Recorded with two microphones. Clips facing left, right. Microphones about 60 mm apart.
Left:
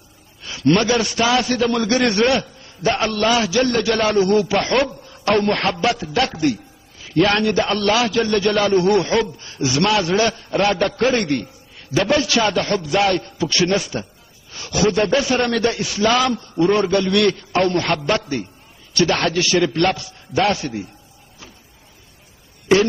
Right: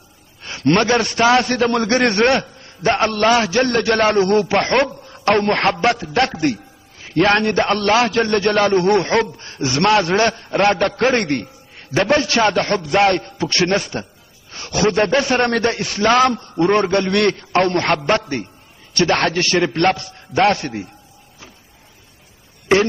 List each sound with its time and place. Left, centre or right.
0.4 s a man's voice: right